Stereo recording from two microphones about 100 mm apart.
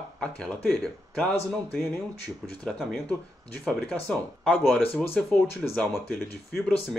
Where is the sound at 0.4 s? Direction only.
10° left (ahead or behind).